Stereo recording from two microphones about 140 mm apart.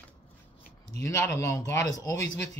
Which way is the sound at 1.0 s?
20° left (ahead or behind).